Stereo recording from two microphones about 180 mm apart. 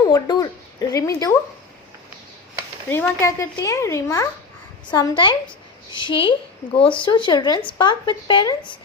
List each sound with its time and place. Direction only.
0.0 s speech: 20° left (ahead or behind)
2.9 s speech: 15° left (ahead or behind)